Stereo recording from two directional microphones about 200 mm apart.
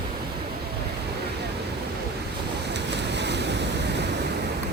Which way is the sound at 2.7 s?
60° right (ahead or behind).